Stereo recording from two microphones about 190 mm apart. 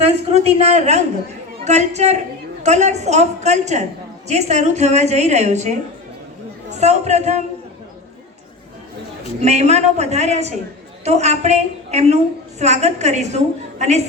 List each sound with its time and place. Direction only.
0.0 s a woman's voice: 35° right (ahead or behind)
6.7 s a woman's voice: 35° right (ahead or behind)
9.4 s a woman's voice: 35° right (ahead or behind)